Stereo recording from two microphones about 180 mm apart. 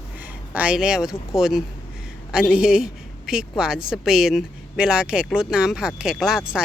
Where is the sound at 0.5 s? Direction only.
5° right (ahead or behind).